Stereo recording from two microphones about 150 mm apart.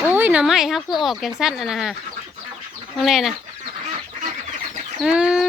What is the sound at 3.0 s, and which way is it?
Speech, centre (ahead or behind).